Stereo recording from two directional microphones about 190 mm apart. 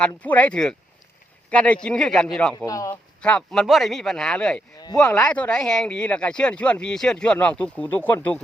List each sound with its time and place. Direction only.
0.2 s speech: 10° left (ahead or behind)
2.6 s speech: 15° left (ahead or behind)
3.2 s speech: 5° left (ahead or behind)